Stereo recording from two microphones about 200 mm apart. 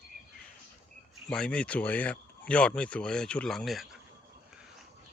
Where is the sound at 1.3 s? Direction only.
5° left (ahead or behind).